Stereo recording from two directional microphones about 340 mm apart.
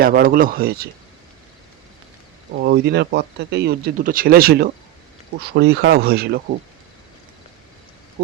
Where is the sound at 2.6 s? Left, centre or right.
Right.